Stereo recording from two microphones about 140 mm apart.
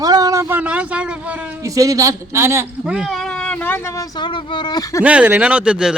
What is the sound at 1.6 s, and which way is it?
A man's voice, 25° right (ahead or behind).